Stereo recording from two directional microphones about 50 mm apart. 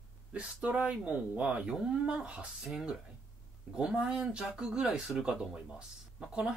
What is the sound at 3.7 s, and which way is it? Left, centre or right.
Speech, centre.